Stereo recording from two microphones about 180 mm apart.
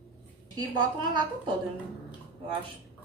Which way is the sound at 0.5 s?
20° right (ahead or behind).